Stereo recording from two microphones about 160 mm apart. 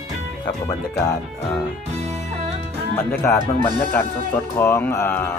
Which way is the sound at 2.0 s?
45° right (ahead or behind).